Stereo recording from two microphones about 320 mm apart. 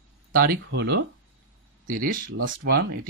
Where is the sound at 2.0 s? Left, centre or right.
Right.